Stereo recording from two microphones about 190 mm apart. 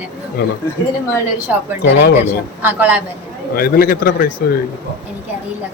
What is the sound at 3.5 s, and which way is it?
A man's voice, 50° left (ahead or behind).